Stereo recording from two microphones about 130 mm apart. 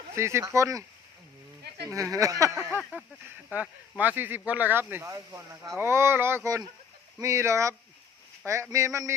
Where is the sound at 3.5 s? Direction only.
10° right (ahead or behind).